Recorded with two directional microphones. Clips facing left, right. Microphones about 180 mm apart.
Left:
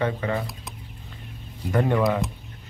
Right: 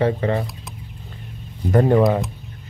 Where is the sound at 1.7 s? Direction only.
40° right (ahead or behind).